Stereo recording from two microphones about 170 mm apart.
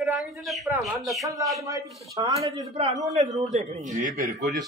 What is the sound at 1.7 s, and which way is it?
Speech, 20° right (ahead or behind).